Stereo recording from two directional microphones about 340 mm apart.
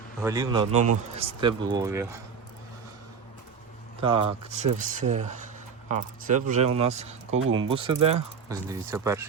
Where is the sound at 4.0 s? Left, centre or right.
Centre.